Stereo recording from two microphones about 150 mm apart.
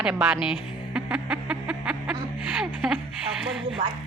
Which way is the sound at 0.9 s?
5° right (ahead or behind).